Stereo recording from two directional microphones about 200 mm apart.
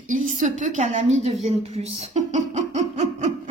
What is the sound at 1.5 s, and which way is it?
Music, 30° right (ahead or behind).